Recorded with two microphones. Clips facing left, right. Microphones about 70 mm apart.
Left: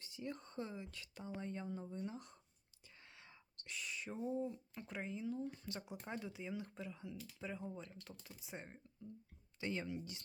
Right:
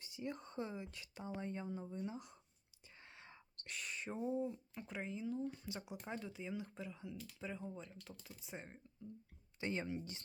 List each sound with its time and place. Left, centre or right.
0.0 s speech: right
1.6 s speech: centre
3.6 s whispering: right
4.2 s speech: centre
4.7 s speech: centre
9.6 s speech: right